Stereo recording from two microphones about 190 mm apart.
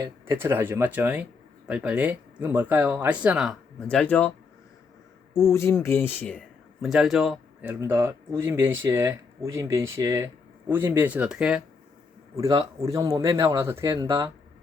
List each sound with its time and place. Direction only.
0.0 s speech: 15° right (ahead or behind); by 4.3 s 10° left (ahead or behind)
5.5 s speech: 15° left (ahead or behind); by 11.6 s 5° right (ahead or behind)
12.4 s speech: 20° right (ahead or behind)